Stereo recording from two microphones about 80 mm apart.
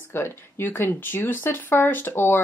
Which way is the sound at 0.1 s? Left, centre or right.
Left.